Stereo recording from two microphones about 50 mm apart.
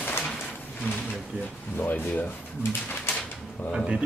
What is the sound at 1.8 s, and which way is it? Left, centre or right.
Speech, left.